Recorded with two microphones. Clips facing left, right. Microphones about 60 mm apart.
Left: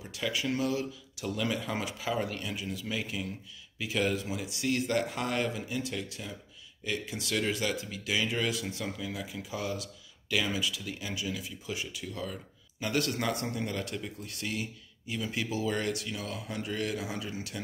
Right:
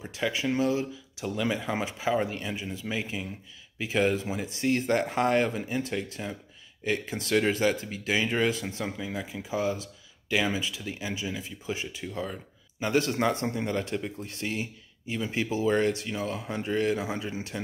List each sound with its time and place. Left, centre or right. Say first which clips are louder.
0.0 s speech: right 4 dB; right